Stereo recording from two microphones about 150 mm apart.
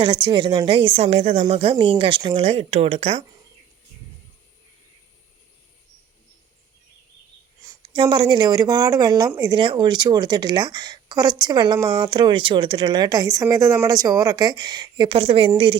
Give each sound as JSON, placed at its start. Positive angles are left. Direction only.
{"t": 0.0, "sound": "a woman's voice", "side_deg": -35}
{"t": 7.8, "sound": "speech", "side_deg": -35}